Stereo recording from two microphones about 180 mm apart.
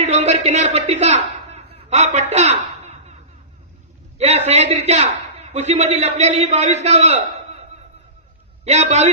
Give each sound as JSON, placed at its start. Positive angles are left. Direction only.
{"t": 0.0, "sound": "a man's voice", "side_deg": -40}
{"t": 4.2, "sound": "a man's voice", "side_deg": -35}
{"t": 8.6, "sound": "a man's voice", "side_deg": -40}